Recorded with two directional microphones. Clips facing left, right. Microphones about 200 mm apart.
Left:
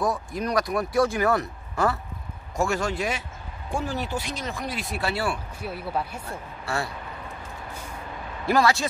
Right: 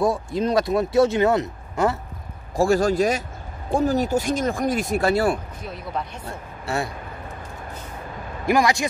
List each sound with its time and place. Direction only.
0.0 s speech: 25° right (ahead or behind)
2.5 s a man's voice: 35° right (ahead or behind)
5.6 s speech: 5° left (ahead or behind)
6.2 s speech: 20° right (ahead or behind)
8.5 s speech: 15° right (ahead or behind)